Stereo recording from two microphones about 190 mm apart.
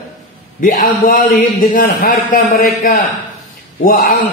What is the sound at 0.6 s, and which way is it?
A man's voice, 45° left (ahead or behind).